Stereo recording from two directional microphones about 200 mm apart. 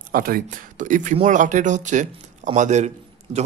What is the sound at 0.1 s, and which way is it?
Speech, 45° right (ahead or behind).